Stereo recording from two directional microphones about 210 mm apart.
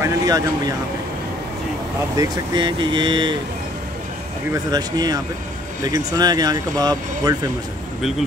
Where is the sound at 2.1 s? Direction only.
20° right (ahead or behind).